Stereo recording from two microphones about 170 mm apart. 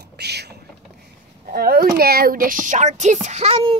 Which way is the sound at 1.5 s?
60° right (ahead or behind).